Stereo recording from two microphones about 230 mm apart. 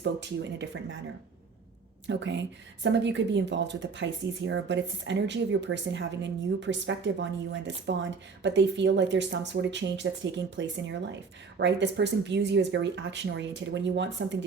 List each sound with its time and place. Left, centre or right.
0.0 s speech: right
2.0 s speech: right